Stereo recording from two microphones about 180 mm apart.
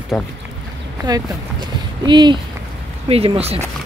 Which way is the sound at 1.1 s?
20° right (ahead or behind).